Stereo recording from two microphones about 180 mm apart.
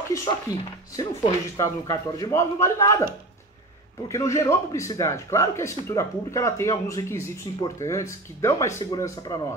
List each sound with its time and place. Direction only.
0.9 s a man's voice: 20° left (ahead or behind)
4.1 s a man's voice: 15° left (ahead or behind)